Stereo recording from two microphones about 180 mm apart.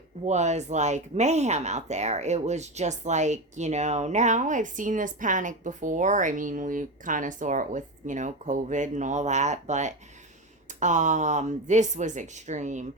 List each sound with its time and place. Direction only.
0.3 s speech: 40° right (ahead or behind)